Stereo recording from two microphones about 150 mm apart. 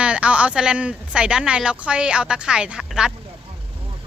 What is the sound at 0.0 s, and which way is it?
Speech, 5° right (ahead or behind).